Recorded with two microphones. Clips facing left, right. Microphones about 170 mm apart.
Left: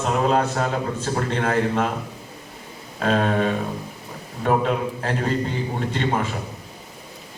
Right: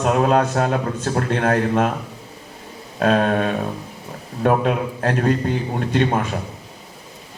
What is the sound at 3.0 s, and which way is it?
A man's voice, 50° right (ahead or behind).